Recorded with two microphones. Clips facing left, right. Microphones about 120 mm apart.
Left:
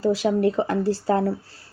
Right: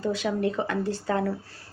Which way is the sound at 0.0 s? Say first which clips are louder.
Left 6 dB; 35° left (ahead or behind).